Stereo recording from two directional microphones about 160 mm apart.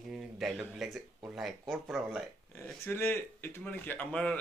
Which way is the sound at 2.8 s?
15° left (ahead or behind).